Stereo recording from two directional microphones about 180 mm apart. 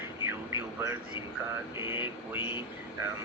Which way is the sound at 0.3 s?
15° right (ahead or behind).